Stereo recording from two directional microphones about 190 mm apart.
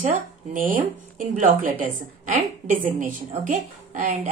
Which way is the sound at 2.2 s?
45° right (ahead or behind).